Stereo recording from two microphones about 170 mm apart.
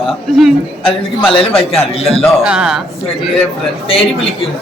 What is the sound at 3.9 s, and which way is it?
Speech, 35° left (ahead or behind).